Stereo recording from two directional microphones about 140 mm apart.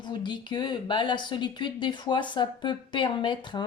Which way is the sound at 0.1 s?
35° left (ahead or behind).